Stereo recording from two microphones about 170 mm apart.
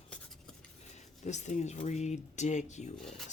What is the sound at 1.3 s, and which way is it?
Speech, 45° left (ahead or behind).